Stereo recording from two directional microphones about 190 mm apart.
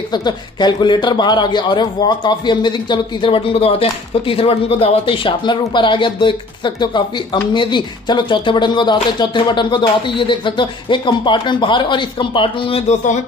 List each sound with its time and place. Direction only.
0.1 s speech: 20° left (ahead or behind)